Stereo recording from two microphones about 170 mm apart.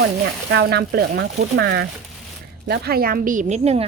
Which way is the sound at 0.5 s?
75° right (ahead or behind).